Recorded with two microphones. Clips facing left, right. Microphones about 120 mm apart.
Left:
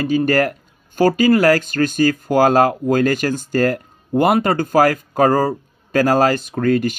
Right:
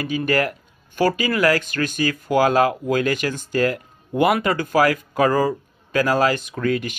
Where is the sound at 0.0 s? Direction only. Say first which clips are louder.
Left 5 dB; 40° left (ahead or behind).